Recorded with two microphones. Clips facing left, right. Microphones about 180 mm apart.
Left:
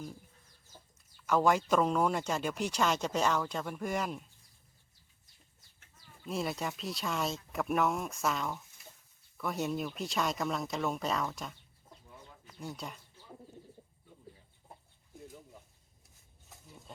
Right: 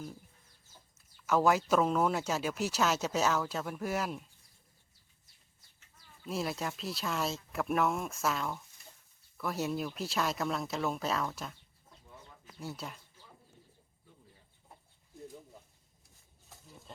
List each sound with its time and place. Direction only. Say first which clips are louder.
0.9 s speech: even; 5° right (ahead or behind)
6.2 s speech: even; centre (ahead or behind)
12.5 s speech: even; 5° right (ahead or behind)
16.0 s a sound: even; centre (ahead or behind)